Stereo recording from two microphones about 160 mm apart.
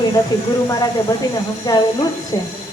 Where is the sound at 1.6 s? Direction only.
25° left (ahead or behind).